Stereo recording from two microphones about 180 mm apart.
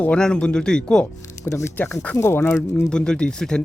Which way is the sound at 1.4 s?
15° left (ahead or behind).